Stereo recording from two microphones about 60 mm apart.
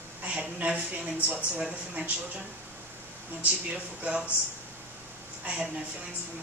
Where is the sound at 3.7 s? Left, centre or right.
Right.